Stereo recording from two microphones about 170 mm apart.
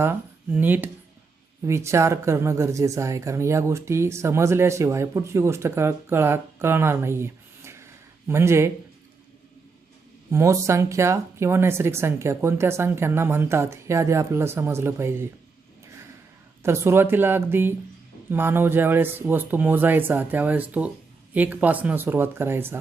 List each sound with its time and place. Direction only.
0.0 s speech: 10° right (ahead or behind)
10.3 s speech: 20° right (ahead or behind)
16.6 s speech: 15° right (ahead or behind)